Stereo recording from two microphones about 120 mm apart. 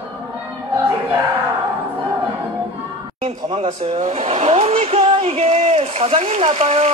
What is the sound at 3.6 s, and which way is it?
Speech, 70° right (ahead or behind).